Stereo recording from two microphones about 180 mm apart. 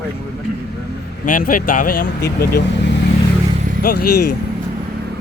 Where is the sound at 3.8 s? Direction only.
55° left (ahead or behind).